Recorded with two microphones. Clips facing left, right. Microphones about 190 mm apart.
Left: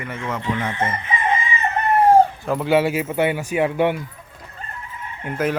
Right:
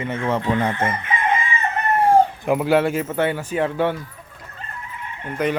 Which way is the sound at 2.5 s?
5° right (ahead or behind).